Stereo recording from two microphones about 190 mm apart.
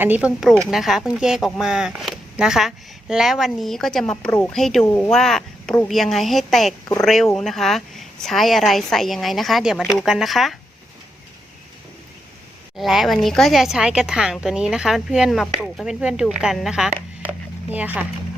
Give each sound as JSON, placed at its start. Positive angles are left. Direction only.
{"t": 0.0, "sound": "a woman's voice", "side_deg": -10}
{"t": 4.3, "sound": "speech", "side_deg": 15}
{"t": 4.5, "sound": "speech", "side_deg": 0}
{"t": 12.7, "sound": "speech", "side_deg": 0}